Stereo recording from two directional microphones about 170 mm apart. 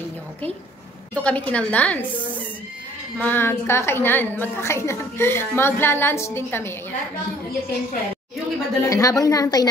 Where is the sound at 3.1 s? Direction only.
10° left (ahead or behind).